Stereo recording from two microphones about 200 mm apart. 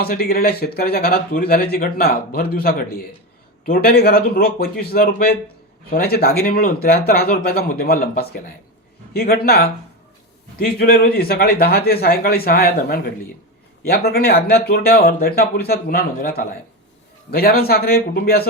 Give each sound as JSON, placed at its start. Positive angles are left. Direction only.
{"t": 0.0, "sound": "speech", "side_deg": 50}